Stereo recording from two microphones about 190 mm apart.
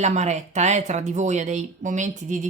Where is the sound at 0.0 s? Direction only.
35° right (ahead or behind).